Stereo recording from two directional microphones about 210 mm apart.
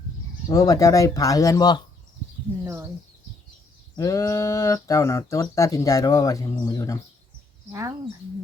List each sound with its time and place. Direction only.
0.4 s speech: 15° left (ahead or behind)
3.9 s speech: 15° left (ahead or behind)
7.7 s speech: 15° right (ahead or behind)